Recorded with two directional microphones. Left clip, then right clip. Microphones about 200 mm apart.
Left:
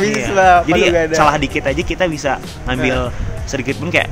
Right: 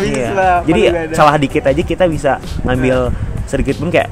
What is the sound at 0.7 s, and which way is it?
Speech, 40° right (ahead or behind).